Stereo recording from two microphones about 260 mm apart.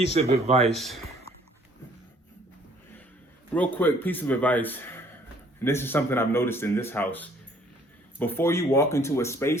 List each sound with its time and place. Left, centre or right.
0.1 s speech: right
0.7 s speech: centre
3.5 s speech: centre